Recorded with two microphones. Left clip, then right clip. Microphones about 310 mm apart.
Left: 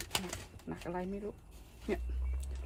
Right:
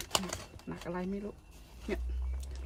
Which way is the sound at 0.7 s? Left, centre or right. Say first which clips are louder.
Even; centre.